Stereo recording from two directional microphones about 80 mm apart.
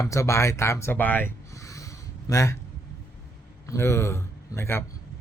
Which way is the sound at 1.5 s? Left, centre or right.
Left.